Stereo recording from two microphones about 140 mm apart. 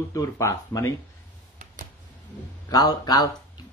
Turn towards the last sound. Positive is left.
turn(degrees=30)  # may be behind; listen again after turning